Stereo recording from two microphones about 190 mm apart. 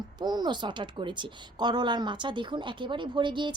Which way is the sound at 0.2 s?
20° right (ahead or behind).